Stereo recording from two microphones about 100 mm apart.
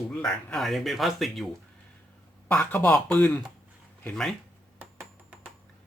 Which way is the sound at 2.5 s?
15° left (ahead or behind).